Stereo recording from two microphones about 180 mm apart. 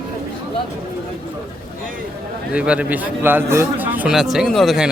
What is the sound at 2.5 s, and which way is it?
A man's voice, 5° right (ahead or behind).